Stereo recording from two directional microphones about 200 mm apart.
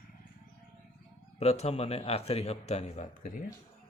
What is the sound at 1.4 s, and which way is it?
A man's voice, 30° left (ahead or behind).